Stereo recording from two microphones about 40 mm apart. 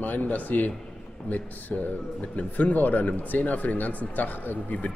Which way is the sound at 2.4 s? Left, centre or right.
Left.